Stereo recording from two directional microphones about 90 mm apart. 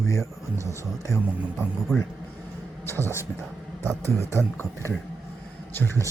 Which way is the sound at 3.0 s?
30° right (ahead or behind).